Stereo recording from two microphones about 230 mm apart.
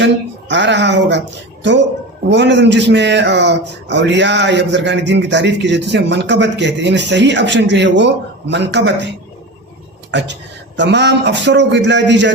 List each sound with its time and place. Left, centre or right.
0.0 s a man's voice: right